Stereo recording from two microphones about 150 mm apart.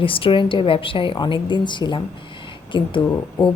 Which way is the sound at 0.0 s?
35° left (ahead or behind).